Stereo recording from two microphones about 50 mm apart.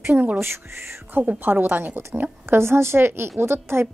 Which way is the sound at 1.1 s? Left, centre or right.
Right.